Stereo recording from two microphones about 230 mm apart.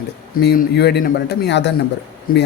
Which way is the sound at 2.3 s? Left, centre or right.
Left.